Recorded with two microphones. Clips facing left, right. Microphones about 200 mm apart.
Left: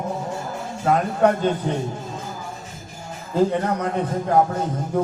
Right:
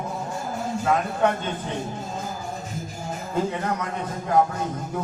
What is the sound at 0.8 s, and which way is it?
Speech, 40° left (ahead or behind).